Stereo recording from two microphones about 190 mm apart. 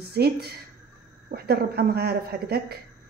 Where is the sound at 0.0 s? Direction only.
55° right (ahead or behind).